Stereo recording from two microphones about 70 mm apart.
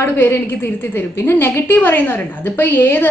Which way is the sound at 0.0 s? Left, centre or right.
Left.